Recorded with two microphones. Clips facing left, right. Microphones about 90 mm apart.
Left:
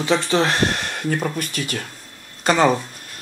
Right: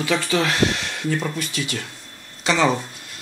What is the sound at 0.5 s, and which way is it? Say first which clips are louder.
Speech: even; 45° left (ahead or behind).